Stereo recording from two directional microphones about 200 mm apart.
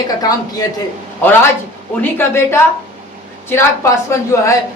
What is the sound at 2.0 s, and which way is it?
A woman's voice, 10° left (ahead or behind).